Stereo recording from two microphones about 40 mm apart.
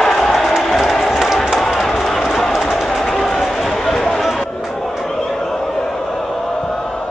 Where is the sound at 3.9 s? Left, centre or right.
Centre.